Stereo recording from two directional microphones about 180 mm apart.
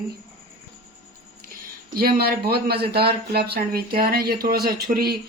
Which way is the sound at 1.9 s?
55° right (ahead or behind).